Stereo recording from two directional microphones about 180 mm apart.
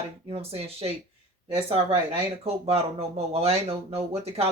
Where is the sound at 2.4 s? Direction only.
35° right (ahead or behind).